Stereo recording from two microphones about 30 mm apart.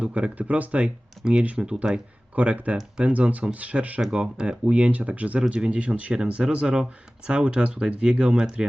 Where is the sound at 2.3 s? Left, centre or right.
Right.